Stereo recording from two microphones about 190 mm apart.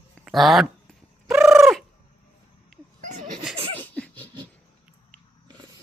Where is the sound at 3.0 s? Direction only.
40° right (ahead or behind).